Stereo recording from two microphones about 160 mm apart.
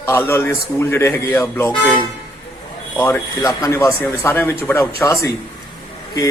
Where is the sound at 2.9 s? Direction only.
10° left (ahead or behind).